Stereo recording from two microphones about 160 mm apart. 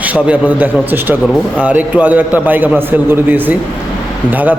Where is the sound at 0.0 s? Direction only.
10° right (ahead or behind).